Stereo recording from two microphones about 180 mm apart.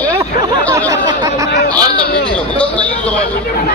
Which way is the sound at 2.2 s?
5° left (ahead or behind).